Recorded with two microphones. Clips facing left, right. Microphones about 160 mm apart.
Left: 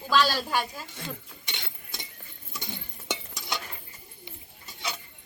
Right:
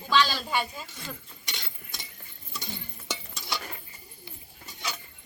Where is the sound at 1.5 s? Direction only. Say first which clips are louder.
Left 1 dB; 20° left (ahead or behind).